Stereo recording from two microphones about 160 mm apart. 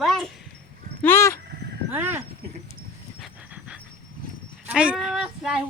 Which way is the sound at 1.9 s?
15° right (ahead or behind).